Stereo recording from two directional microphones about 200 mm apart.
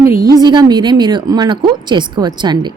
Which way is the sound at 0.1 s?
45° right (ahead or behind).